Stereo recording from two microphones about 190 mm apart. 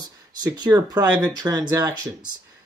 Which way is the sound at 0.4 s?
20° right (ahead or behind).